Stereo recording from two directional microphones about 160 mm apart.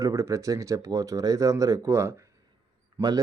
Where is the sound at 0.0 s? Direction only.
20° right (ahead or behind).